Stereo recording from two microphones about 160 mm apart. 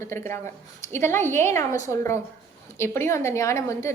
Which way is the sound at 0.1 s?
15° left (ahead or behind).